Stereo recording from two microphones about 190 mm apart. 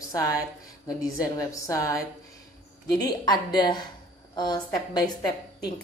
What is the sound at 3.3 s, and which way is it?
A woman's voice, 20° left (ahead or behind).